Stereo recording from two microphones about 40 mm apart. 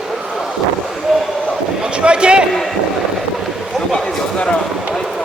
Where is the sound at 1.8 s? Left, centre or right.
Right.